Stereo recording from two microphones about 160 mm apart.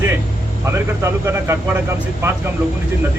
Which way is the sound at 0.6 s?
15° right (ahead or behind).